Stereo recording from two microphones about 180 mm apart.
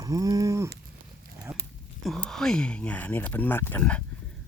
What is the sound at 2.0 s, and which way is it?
Speech, 5° left (ahead or behind).